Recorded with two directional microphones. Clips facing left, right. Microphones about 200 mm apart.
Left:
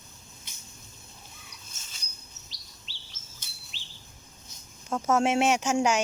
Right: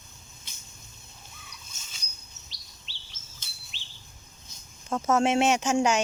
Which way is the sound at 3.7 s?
40° left (ahead or behind).